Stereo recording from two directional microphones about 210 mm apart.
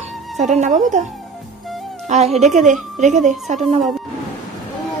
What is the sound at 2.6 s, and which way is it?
Speech, 35° right (ahead or behind).